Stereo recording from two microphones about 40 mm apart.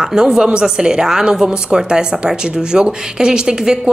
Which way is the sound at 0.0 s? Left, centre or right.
Centre.